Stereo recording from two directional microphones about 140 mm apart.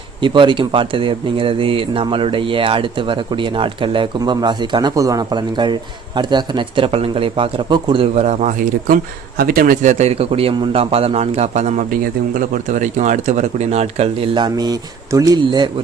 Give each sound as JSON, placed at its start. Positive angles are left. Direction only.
{"t": 0.2, "sound": "speech", "side_deg": -35}
{"t": 8.1, "sound": "speech", "side_deg": -55}
{"t": 9.4, "sound": "a man's voice", "side_deg": -90}
{"t": 14.3, "sound": "speech", "side_deg": -30}